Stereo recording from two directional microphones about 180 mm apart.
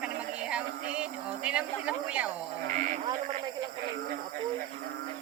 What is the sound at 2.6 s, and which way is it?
Speech, 40° right (ahead or behind).